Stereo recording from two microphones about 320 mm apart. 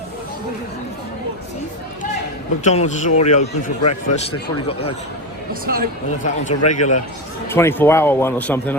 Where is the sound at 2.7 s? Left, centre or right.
Left.